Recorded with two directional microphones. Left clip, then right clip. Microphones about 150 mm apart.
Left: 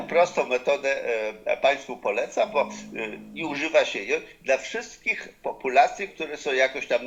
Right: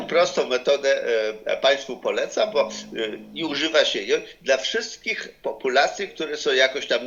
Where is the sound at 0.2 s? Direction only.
40° right (ahead or behind).